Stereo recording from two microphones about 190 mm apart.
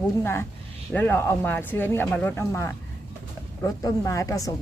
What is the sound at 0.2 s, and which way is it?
A woman's voice, 15° left (ahead or behind).